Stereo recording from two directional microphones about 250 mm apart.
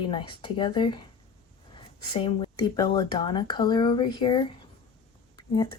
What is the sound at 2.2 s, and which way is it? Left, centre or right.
Speech, centre.